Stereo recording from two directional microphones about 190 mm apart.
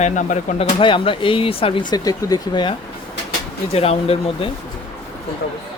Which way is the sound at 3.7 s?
30° left (ahead or behind).